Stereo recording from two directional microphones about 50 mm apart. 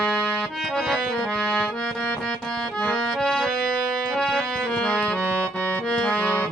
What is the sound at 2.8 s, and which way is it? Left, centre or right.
Accordion, centre.